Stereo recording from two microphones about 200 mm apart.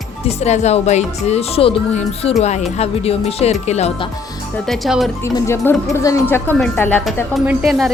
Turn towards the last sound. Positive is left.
turn(degrees=0)  # may be behind; listen again after turning